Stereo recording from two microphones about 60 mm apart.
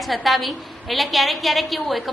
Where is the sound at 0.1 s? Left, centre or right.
Centre.